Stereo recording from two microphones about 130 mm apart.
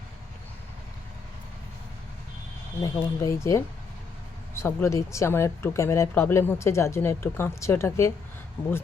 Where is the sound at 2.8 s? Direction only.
25° left (ahead or behind).